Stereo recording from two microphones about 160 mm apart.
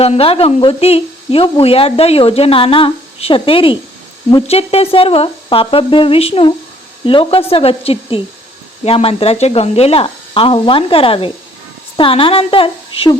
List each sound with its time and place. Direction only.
0.0 s speech: 40° left (ahead or behind)